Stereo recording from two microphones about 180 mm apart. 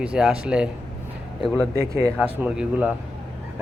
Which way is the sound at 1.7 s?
15° right (ahead or behind).